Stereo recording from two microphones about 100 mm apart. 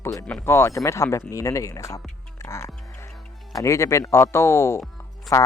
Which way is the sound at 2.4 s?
30° left (ahead or behind).